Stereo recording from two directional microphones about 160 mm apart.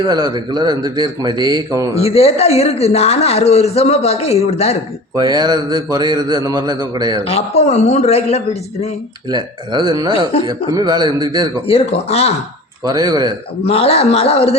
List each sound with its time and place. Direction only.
0.1 s a man's voice: 25° right (ahead or behind)
2.0 s speech: 40° left (ahead or behind)
5.1 s a man's voice: 25° right (ahead or behind)
7.3 s a man's voice: 40° left (ahead or behind)
9.3 s a man's voice: 25° right (ahead or behind)
10.1 s speech: 35° left (ahead or behind)
10.7 s a man's voice: 25° right (ahead or behind)
11.7 s speech: 40° left (ahead or behind)
12.8 s a man's voice: 25° right (ahead or behind)
13.7 s speech: 35° left (ahead or behind)